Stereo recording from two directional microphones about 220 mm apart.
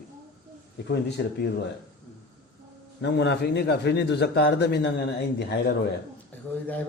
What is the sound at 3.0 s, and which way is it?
A man's voice, 50° left (ahead or behind).